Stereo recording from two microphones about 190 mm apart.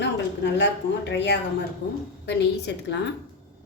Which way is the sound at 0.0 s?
65° left (ahead or behind).